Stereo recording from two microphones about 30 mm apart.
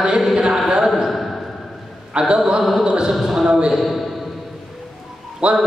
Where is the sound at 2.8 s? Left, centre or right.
Right.